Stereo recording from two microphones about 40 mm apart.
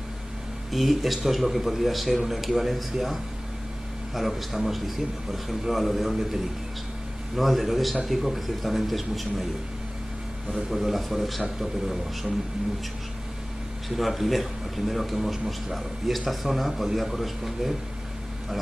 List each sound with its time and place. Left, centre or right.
0.7 s speech: centre
7.3 s speech: centre
10.5 s speech: centre
13.8 s speech: centre